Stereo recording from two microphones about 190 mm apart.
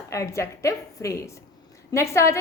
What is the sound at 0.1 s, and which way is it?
A woman's voice, 15° left (ahead or behind).